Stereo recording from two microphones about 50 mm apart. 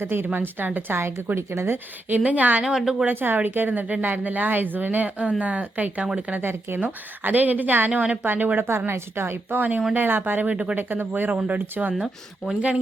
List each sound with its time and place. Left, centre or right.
0.0 s speech: right
0.3 s speech: right
1.4 s speech: right
1.7 s speech: right
2.6 s a woman's voice: centre
3.1 s speech: right
6.3 s speech: right
6.7 s speech: right
8.5 s speech: right
10.5 s speech: right
10.8 s speech: right